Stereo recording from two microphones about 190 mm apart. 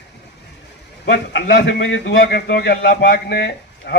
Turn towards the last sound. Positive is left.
turn(degrees=55)  # may be behind; listen again after turning